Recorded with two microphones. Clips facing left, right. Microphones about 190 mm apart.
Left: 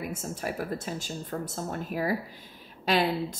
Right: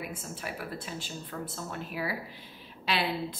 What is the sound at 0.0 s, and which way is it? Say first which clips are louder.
A woman's voice: left 5 dB; 45° left (ahead or behind).